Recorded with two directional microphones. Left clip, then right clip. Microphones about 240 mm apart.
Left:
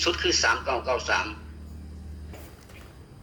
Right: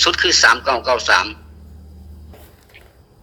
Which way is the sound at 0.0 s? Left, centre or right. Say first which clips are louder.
Right 11 dB; right.